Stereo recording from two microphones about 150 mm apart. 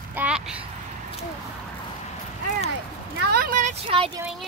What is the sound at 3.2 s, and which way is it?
Speech, 80° right.